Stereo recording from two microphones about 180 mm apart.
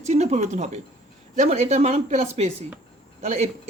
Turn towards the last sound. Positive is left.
turn(degrees=-35)  # may be behind; listen again after turning